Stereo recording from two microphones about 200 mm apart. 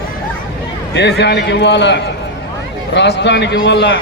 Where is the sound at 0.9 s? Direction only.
60° left (ahead or behind).